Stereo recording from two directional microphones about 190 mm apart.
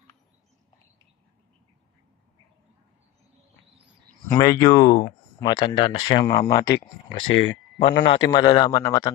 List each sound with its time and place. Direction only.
4.3 s speech: 20° left (ahead or behind)
7.2 s speech: 85° left
8.1 s speech: 20° left (ahead or behind)